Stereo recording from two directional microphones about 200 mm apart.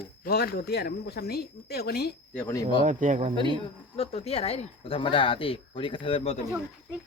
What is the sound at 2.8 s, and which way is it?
Speech, 40° right (ahead or behind).